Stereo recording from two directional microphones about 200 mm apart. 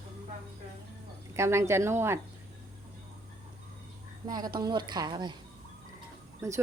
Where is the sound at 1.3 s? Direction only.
15° right (ahead or behind).